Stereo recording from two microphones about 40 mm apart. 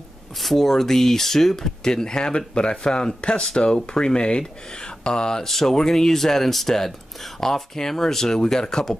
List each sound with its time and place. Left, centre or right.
0.4 s speech: centre
5.5 s speech: centre